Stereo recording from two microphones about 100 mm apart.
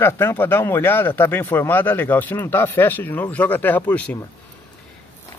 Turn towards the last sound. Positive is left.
turn(degrees=15)  # may be behind; listen again after turning